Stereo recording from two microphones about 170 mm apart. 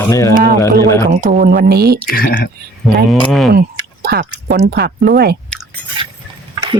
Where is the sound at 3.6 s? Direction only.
65° right (ahead or behind).